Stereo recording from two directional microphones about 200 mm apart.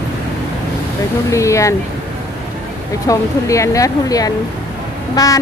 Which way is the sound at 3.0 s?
15° left (ahead or behind).